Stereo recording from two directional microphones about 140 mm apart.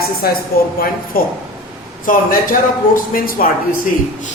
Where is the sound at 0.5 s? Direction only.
90° left.